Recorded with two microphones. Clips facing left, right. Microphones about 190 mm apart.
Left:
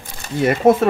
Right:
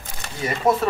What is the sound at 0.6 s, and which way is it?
Speech, 50° left (ahead or behind).